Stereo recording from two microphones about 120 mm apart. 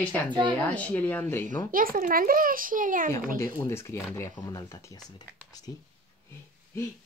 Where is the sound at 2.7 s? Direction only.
90° right.